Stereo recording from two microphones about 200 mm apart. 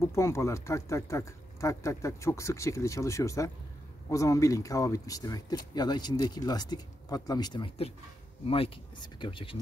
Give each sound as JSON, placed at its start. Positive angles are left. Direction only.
{"t": 0.1, "sound": "speech", "side_deg": 15}